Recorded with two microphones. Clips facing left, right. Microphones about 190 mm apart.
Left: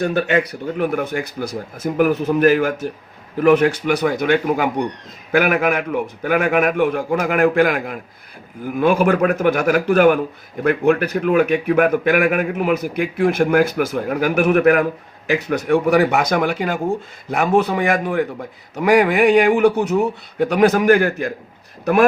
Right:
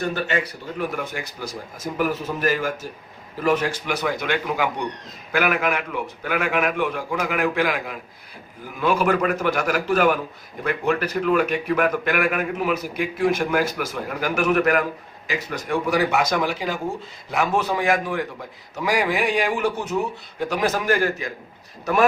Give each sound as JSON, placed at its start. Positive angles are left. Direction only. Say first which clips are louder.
{"t": 0.1, "sound": "a man's voice", "louder": "left 7 dB", "side_deg": 55}